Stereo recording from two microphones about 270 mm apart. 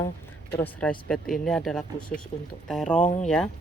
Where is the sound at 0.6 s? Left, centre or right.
Centre.